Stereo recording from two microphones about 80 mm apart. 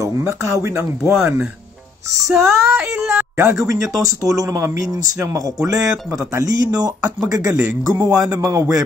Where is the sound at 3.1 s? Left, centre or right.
Right.